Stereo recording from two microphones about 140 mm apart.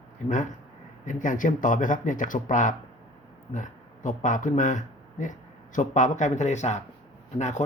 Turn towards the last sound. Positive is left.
turn(degrees=60)  # may be behind; listen again after turning